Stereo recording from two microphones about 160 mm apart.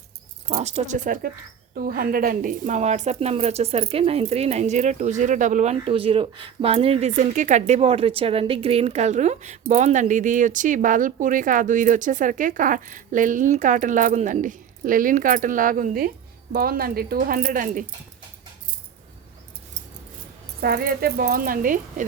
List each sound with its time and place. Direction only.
0.4 s speech: 45° right (ahead or behind)
20.6 s speech: 70° right (ahead or behind)